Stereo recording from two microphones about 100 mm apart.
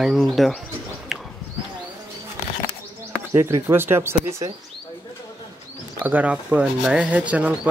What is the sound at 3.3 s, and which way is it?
Speech, 25° right (ahead or behind).